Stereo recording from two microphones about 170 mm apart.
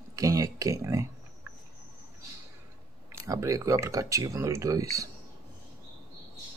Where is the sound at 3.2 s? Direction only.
20° right (ahead or behind).